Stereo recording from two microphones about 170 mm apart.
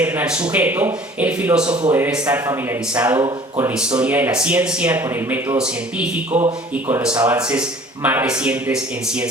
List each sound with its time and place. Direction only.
0.0 s speech: 10° right (ahead or behind)
3.2 s speech: 20° right (ahead or behind)
3.8 s speech: 5° right (ahead or behind)